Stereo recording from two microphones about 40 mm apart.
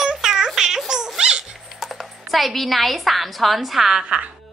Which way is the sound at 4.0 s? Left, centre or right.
Right.